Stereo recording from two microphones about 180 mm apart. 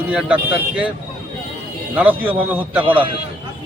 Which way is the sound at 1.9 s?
10° right (ahead or behind).